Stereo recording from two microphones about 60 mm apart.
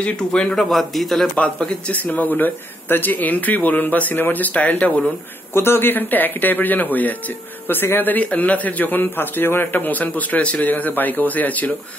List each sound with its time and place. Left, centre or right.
0.0 s a man's voice: centre
0.7 s a man's voice: centre
1.3 s speech: left
5.5 s speech: left